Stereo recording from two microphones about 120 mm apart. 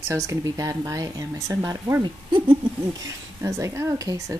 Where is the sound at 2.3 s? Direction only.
40° right (ahead or behind).